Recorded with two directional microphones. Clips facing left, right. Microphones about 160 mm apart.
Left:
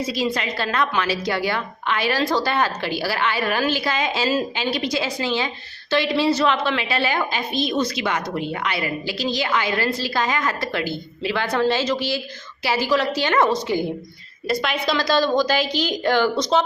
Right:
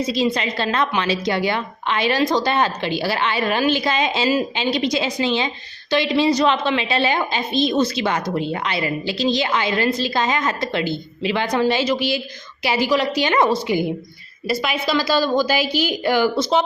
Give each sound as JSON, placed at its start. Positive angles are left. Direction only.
{"t": 0.0, "sound": "a woman's voice", "side_deg": -20}